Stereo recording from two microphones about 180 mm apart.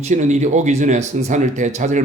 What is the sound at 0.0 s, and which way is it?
A man's voice, 40° right (ahead or behind).